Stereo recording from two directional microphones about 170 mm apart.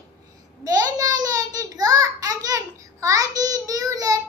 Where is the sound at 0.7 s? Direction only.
20° right (ahead or behind).